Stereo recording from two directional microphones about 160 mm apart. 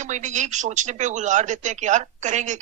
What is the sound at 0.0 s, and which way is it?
A man's voice, 50° right (ahead or behind).